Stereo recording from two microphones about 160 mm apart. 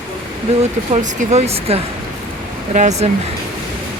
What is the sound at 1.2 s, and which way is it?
Speech, 45° right (ahead or behind).